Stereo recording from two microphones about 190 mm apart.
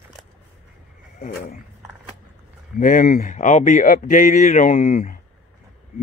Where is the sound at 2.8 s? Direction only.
45° left (ahead or behind).